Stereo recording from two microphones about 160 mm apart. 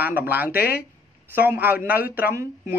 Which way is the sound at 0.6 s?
75° left (ahead or behind).